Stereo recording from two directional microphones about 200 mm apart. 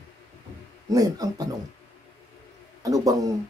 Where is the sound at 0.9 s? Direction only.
20° right (ahead or behind).